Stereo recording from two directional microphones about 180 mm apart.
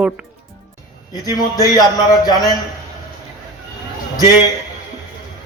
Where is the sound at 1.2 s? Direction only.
20° left (ahead or behind).